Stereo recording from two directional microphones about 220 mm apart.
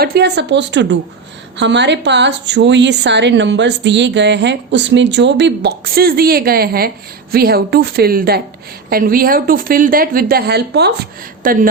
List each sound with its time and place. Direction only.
0.0 s a woman's voice: 45° right (ahead or behind)